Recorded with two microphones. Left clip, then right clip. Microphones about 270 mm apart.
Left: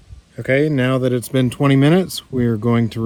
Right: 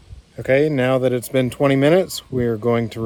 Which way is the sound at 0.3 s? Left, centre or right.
Left.